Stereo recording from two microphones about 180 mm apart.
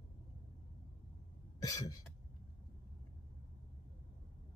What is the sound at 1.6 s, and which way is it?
Cough, 20° left (ahead or behind).